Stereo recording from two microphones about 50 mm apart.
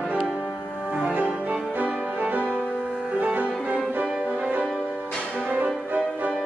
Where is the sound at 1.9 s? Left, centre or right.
Right.